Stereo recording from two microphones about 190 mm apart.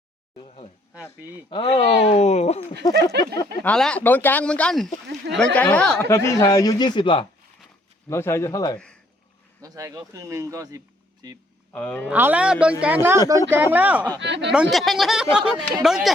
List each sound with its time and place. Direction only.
0.3 s a sound: 30° left (ahead or behind)
1.2 s speech: 10° right (ahead or behind)
1.5 s speech: 25° left (ahead or behind)
2.9 s a sound: 65° right (ahead or behind)
3.6 s speech: 5° left (ahead or behind); by 7.3 s 25° left (ahead or behind)
8.1 s speech: 15° left (ahead or behind)
9.6 s speech: 20° right (ahead or behind)
11.7 s speech: 10° left (ahead or behind)
12.0 s speech: 10° right (ahead or behind)
14.2 s speech: 65° right (ahead or behind)
14.5 s speech: 5° right (ahead or behind)